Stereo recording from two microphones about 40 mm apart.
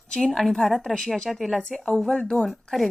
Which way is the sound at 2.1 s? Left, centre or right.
Left.